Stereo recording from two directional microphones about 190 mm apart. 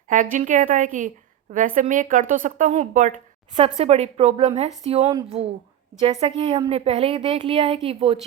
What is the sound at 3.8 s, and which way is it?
A woman's voice, 30° right (ahead or behind).